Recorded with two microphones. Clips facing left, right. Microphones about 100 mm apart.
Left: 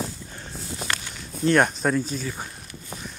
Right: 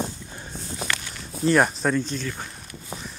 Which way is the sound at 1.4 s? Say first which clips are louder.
Even; centre (ahead or behind).